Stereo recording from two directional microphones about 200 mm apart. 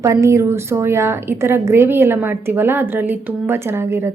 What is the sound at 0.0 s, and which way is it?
A woman's voice, 15° right (ahead or behind).